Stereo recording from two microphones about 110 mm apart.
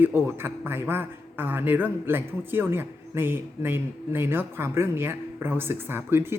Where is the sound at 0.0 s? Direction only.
20° right (ahead or behind).